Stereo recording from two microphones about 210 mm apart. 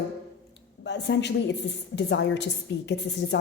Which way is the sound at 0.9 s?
55° left (ahead or behind).